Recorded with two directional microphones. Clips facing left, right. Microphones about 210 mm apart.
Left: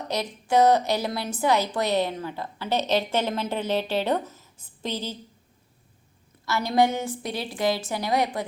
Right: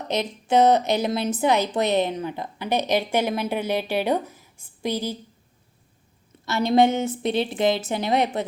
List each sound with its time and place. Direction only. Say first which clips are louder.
0.1 s a woman's voice: right 3 dB; 20° right (ahead or behind)
6.4 s a woman's voice: right 4 dB; 25° right (ahead or behind)